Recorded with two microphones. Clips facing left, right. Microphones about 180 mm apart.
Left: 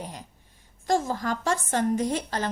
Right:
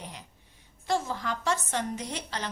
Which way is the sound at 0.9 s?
45° left (ahead or behind).